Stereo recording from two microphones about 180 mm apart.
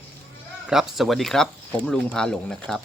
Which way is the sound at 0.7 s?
Centre (ahead or behind).